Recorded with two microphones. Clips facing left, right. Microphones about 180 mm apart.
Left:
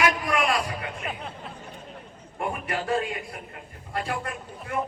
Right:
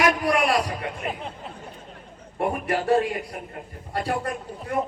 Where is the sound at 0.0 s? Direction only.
35° right (ahead or behind).